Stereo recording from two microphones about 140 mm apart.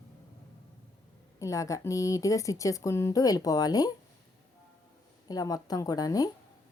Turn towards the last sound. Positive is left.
turn(degrees=25)  # may be behind; listen again after turning